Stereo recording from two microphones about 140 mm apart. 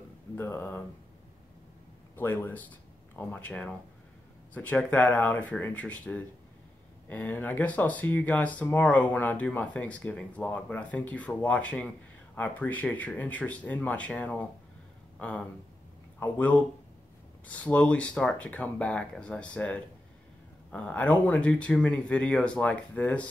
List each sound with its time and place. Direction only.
0.4 s speech: 15° left (ahead or behind)
2.1 s speech: 15° left (ahead or behind)